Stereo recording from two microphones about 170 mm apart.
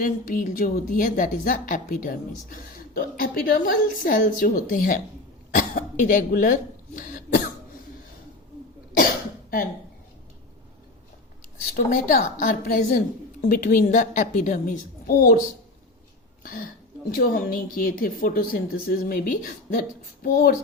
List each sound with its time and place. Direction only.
0.0 s a woman's voice: 55° left (ahead or behind)
5.5 s cough: 50° left (ahead or behind)
11.9 s a woman's voice: 50° left (ahead or behind)
16.4 s a woman's voice: 55° left (ahead or behind)